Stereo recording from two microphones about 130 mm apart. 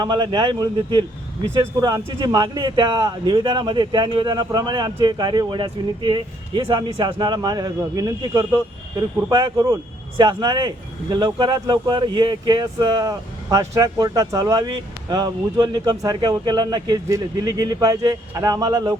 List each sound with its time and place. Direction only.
0.0 s speech: 35° right (ahead or behind)